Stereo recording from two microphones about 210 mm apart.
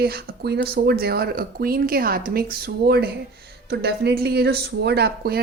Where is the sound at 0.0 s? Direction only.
45° right (ahead or behind).